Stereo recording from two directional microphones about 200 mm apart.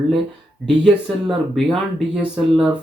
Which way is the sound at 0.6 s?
Centre (ahead or behind).